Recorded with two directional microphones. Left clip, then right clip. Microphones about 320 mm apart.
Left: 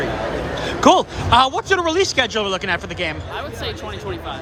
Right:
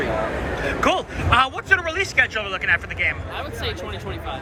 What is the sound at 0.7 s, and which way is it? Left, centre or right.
Speech, centre.